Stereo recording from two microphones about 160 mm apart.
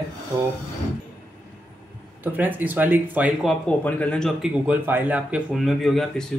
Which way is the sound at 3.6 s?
5° left (ahead or behind).